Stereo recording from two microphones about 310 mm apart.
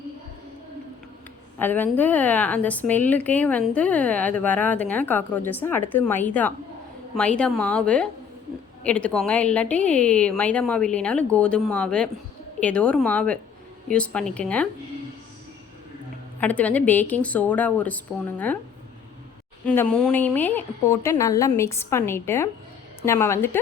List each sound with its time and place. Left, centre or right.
1.5 s a woman's voice: centre
16.4 s a woman's voice: centre
19.6 s a woman's voice: centre